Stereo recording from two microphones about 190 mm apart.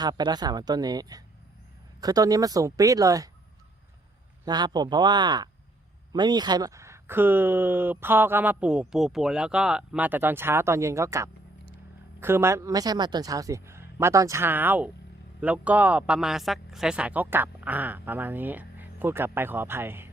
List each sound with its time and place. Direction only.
0.0 s speech: 20° right (ahead or behind)
4.4 s speech: 20° right (ahead or behind)